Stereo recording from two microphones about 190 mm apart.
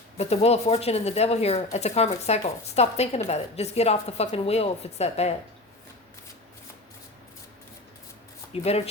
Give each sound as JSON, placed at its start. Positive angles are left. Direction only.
{"t": 0.2, "sound": "speech", "side_deg": 35}
{"t": 8.5, "sound": "speech", "side_deg": 30}